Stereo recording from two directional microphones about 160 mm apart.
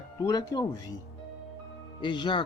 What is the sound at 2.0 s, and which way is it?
Speech, 30° left (ahead or behind).